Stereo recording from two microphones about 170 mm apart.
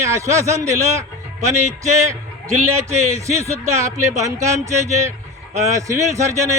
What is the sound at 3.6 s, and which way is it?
Speech, 15° right (ahead or behind).